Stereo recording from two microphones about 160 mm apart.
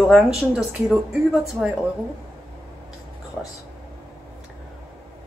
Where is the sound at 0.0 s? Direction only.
Centre (ahead or behind).